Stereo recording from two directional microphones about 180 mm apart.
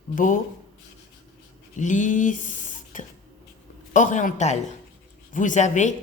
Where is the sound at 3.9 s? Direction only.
45° left (ahead or behind).